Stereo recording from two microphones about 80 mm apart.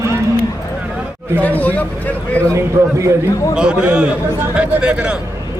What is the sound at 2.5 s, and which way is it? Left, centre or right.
Speech, right.